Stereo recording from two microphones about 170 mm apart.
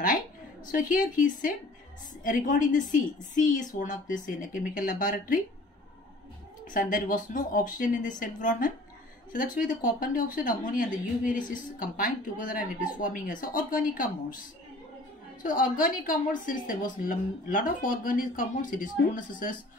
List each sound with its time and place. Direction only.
0.7 s speech: 50° left (ahead or behind)
6.7 s speech: 50° left (ahead or behind)
15.4 s speech: 50° left (ahead or behind)